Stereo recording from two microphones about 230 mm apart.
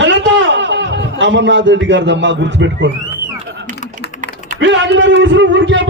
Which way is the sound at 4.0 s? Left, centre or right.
Right.